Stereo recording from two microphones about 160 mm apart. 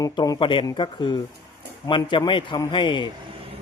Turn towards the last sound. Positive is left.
turn(degrees=30)  # may be behind; listen again after turning